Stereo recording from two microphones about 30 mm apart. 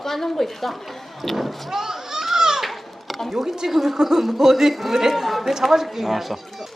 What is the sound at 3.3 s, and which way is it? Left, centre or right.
A woman's voice, centre.